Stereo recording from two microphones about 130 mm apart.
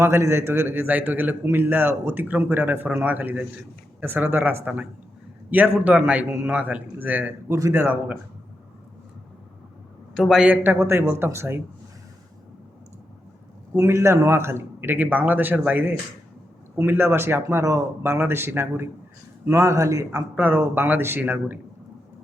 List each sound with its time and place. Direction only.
0.0 s a man's voice: 20° right (ahead or behind)
10.2 s a man's voice: 5° right (ahead or behind)
10.5 s a man's voice: 15° right (ahead or behind)
13.7 s a man's voice: 20° right (ahead or behind)